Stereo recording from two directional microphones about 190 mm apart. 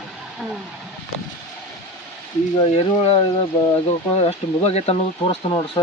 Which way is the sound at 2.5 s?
30° left (ahead or behind).